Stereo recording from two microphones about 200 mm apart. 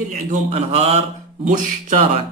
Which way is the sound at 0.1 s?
35° right (ahead or behind).